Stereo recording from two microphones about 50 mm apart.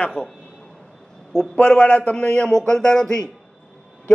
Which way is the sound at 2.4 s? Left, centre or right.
Centre.